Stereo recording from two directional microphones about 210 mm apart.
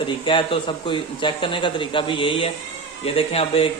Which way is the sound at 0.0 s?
25° left (ahead or behind).